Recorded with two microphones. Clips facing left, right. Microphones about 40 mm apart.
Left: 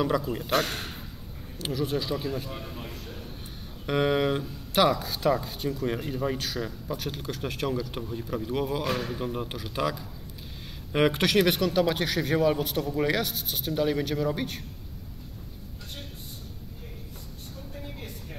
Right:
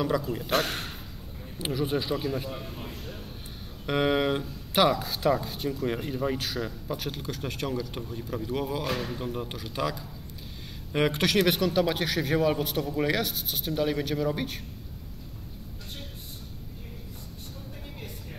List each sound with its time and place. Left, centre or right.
0.0 s speech: centre
0.5 s speech: centre
2.5 s a man's voice: centre
3.8 s speech: centre